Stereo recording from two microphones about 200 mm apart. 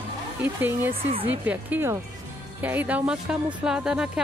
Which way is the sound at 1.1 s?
30° right (ahead or behind).